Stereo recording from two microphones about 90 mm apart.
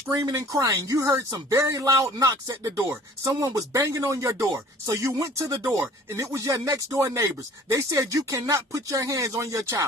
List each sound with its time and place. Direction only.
0.3 s speech: 45° right (ahead or behind)